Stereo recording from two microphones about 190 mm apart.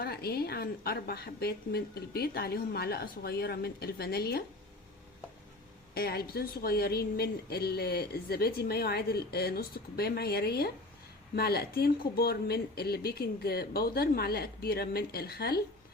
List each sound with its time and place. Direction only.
0.0 s speech: 55° left (ahead or behind)
5.9 s speech: 55° left (ahead or behind)